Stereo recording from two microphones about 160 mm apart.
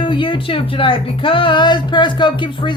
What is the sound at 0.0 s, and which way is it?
A woman's voice, 30° left (ahead or behind).